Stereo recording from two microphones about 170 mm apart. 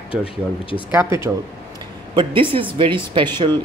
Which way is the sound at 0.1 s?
30° left (ahead or behind).